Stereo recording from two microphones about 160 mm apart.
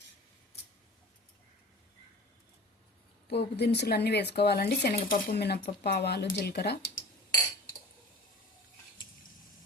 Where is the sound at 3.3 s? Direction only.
90° left.